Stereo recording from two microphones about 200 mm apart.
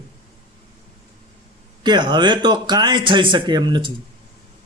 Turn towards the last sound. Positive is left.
turn(degrees=-20)  # may be behind; listen again after turning